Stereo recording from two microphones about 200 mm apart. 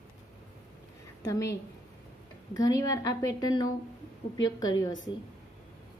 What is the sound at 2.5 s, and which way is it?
A woman's voice, 15° left (ahead or behind).